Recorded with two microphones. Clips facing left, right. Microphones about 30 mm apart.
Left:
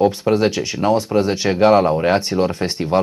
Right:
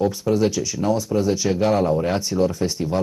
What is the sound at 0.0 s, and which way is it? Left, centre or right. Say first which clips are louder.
Speech: left 4 dB; left.